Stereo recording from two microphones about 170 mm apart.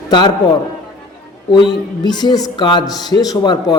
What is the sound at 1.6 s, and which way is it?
Speech, 25° left (ahead or behind).